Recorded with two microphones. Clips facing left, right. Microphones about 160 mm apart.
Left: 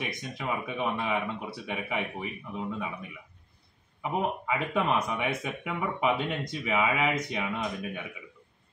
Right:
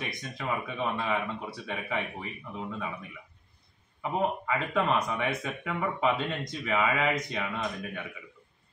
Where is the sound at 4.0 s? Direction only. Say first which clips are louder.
Right 1 dB; 15° left (ahead or behind).